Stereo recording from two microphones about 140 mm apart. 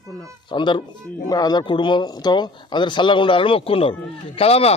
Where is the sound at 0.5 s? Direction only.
35° left (ahead or behind).